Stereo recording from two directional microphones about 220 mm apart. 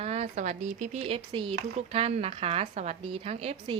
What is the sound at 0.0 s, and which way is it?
Speech, 30° right (ahead or behind).